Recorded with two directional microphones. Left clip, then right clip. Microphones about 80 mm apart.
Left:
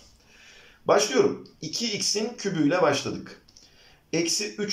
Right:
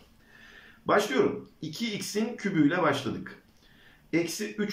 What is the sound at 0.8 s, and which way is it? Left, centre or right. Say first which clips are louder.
Speech: left 4 dB; left.